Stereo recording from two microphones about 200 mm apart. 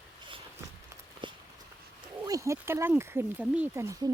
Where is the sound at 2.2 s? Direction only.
15° right (ahead or behind).